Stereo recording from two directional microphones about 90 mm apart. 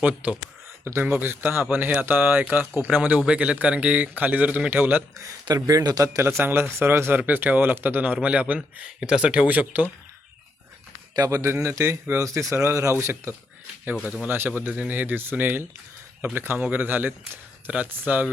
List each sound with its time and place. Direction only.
0.0 s a man's voice: 15° right (ahead or behind)
5.1 s speech: 35° right (ahead or behind); by 9.9 s 20° right (ahead or behind)
11.3 s speech: 35° right (ahead or behind)
13.8 s a man's voice: 15° right (ahead or behind)